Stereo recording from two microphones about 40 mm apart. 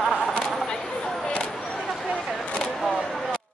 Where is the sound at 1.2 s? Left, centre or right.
Left.